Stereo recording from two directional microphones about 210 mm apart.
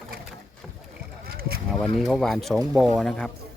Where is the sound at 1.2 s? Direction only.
45° right (ahead or behind).